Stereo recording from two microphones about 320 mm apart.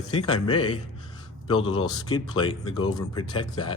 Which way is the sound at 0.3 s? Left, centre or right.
Centre.